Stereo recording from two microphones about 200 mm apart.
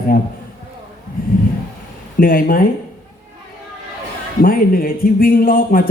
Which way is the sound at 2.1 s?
45° left (ahead or behind).